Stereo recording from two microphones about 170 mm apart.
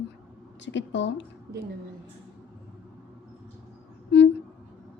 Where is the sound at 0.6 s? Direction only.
90° left.